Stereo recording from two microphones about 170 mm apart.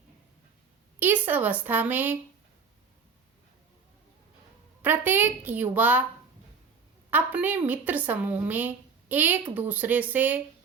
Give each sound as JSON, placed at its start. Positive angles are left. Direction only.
{"t": 0.9, "sound": "a woman's voice", "side_deg": -10}
{"t": 4.8, "sound": "a woman's voice", "side_deg": -10}
{"t": 7.1, "sound": "a woman's voice", "side_deg": -10}